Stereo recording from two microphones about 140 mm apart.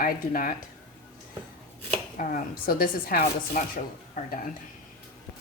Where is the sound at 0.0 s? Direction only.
85° left.